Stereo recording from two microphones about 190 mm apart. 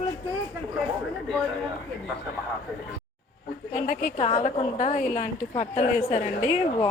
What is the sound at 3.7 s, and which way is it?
A woman's voice, 45° left (ahead or behind).